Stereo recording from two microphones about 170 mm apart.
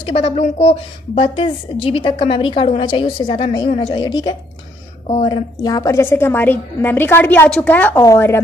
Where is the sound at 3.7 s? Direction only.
40° left (ahead or behind).